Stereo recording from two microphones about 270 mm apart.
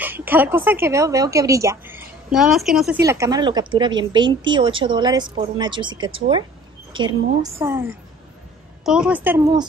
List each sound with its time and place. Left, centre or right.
0.0 s a woman's voice: centre
3.0 s a woman's voice: centre